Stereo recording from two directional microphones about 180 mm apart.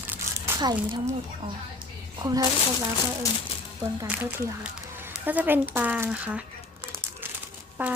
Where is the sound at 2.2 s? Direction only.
20° right (ahead or behind).